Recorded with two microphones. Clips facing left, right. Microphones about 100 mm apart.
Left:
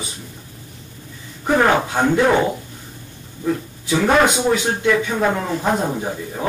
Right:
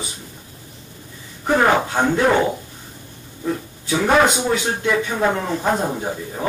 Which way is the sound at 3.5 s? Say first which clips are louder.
Left 2 dB; 10° right (ahead or behind).